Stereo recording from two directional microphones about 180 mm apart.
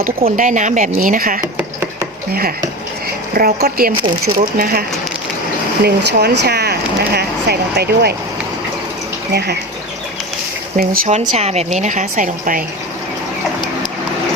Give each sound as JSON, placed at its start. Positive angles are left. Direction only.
{"t": 0.3, "sound": "a woman's voice", "side_deg": -45}
{"t": 3.3, "sound": "a woman's voice", "side_deg": -55}
{"t": 5.8, "sound": "speech", "side_deg": -65}
{"t": 9.3, "sound": "speech", "side_deg": -65}
{"t": 10.8, "sound": "a woman's voice", "side_deg": -55}
{"t": 11.1, "sound": "a woman's voice", "side_deg": -40}